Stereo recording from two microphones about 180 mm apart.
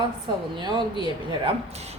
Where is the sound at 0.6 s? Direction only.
25° right (ahead or behind).